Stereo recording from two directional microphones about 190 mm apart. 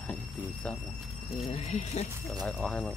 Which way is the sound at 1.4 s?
35° left (ahead or behind).